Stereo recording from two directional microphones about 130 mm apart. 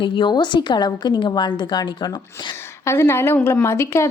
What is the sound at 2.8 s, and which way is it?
A woman's voice, 20° left (ahead or behind).